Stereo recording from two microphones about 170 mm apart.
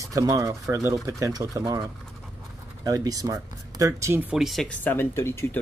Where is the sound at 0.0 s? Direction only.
20° right (ahead or behind).